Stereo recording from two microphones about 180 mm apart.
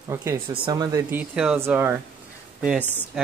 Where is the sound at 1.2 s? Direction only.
5° right (ahead or behind).